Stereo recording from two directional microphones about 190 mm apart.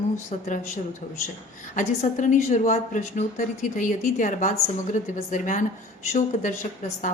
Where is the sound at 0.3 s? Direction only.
40° left (ahead or behind).